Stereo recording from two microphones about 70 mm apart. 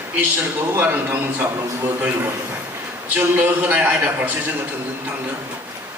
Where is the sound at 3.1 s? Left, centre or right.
Right.